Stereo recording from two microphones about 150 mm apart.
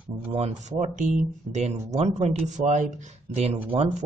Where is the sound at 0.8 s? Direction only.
55° right (ahead or behind).